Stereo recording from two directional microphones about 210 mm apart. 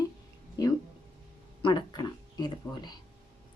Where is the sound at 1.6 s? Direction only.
20° left (ahead or behind).